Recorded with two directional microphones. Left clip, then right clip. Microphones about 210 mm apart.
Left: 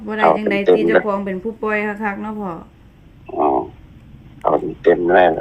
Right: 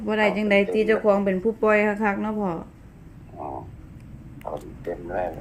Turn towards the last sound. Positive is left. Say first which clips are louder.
# left 17 dB
turn(degrees=45)  # may be behind; listen again after turning